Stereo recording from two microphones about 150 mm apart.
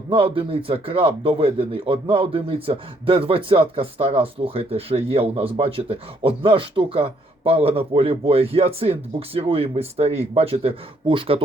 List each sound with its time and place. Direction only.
0.1 s speech: 35° right (ahead or behind)